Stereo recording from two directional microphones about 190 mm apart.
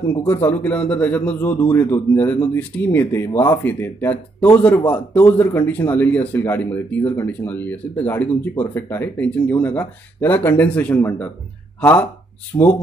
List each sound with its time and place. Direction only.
0.3 s a man's voice: 10° left (ahead or behind)
12.5 s speech: 20° left (ahead or behind)